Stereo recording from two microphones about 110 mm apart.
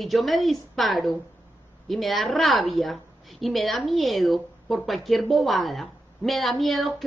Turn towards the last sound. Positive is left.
turn(degrees=0)  # may be behind; listen again after turning